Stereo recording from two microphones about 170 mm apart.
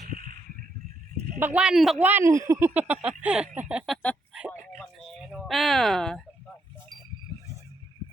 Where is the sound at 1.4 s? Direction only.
10° right (ahead or behind).